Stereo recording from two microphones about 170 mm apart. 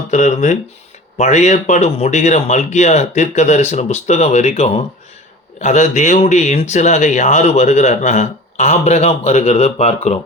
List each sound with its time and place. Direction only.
0.1 s speech: 45° left (ahead or behind)